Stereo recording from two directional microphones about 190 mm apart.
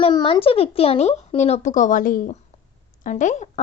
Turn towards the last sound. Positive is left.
turn(degrees=40)  # may be behind; listen again after turning